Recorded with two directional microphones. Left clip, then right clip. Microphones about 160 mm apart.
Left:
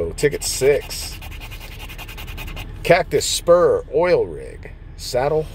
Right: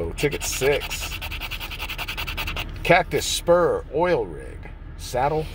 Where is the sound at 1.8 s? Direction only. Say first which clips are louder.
Right 6 dB; 10° right (ahead or behind).